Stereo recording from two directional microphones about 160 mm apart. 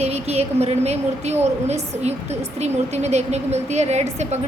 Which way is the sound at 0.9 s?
45° right (ahead or behind).